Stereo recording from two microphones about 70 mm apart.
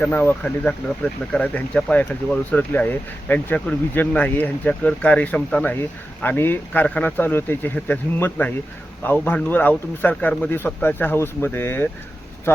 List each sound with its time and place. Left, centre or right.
0.0 s speech: left
6.2 s speech: left